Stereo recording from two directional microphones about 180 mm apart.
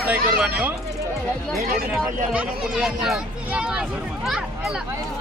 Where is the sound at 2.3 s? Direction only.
5° right (ahead or behind).